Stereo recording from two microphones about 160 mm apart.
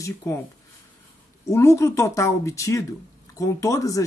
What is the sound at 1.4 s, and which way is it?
Speech, 20° left (ahead or behind).